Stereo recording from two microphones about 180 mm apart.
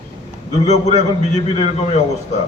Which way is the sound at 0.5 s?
35° left (ahead or behind).